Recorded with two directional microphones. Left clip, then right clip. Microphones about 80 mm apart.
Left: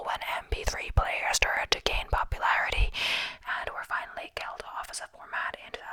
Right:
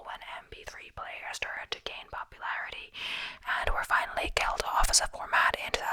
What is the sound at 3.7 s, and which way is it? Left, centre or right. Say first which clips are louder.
Whispering: right 5 dB; centre.